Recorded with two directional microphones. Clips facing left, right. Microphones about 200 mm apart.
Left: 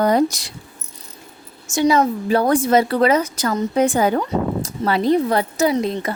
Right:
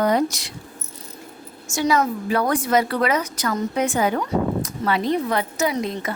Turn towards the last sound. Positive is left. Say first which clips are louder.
# left 5 dB
turn(degrees=35)  # may be behind; listen again after turning